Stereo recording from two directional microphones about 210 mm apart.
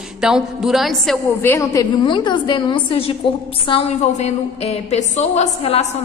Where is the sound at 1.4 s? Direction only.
15° left (ahead or behind).